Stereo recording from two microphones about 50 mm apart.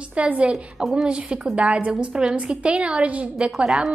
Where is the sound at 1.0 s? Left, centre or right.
Centre.